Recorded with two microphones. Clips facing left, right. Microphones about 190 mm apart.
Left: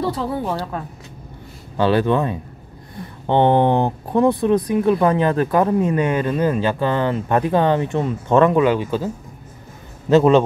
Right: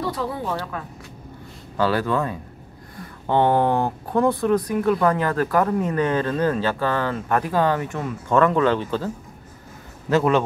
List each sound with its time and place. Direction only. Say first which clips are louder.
0.0 s speech: left 4 dB; 30° left (ahead or behind); by 9.1 s 10° left (ahead or behind)
10.0 s speech: left 6 dB; 25° left (ahead or behind)